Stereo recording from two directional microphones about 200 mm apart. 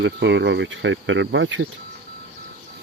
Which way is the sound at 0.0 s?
60° right (ahead or behind).